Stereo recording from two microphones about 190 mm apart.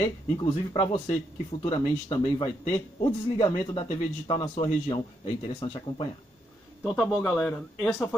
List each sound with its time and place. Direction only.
0.0 s a man's voice: 25° left (ahead or behind)
6.8 s a man's voice: centre (ahead or behind)
7.2 s speech: 10° left (ahead or behind)